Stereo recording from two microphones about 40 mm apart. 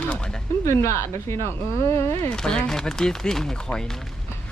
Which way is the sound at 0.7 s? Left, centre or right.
Left.